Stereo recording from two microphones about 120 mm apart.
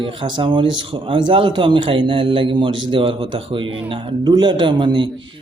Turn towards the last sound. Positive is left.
turn(degrees=-40)  # may be behind; listen again after turning